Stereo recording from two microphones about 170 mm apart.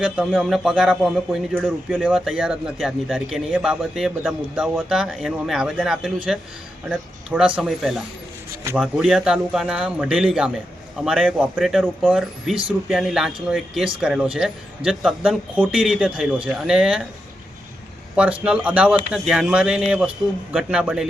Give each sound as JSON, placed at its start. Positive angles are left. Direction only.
{"t": 0.0, "sound": "a man's voice", "side_deg": 0}
{"t": 18.2, "sound": "a man's voice", "side_deg": -5}